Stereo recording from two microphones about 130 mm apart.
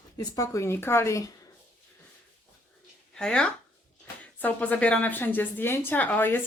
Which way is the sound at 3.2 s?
5° left (ahead or behind).